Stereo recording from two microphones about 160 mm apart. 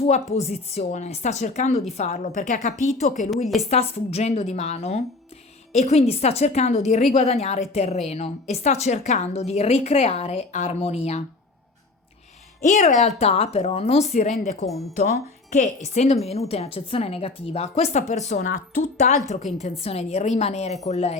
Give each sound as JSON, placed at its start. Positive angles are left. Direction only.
{"t": 0.0, "sound": "a woman's voice", "side_deg": 40}
{"t": 3.2, "sound": "a woman's voice", "side_deg": 0}
{"t": 3.6, "sound": "a woman's voice", "side_deg": 40}
{"t": 12.6, "sound": "a woman's voice", "side_deg": 50}